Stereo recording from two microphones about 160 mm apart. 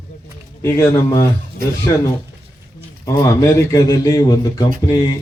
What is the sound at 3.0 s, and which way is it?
Speech, 20° left (ahead or behind).